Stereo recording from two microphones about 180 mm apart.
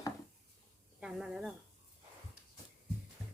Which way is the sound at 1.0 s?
Centre (ahead or behind).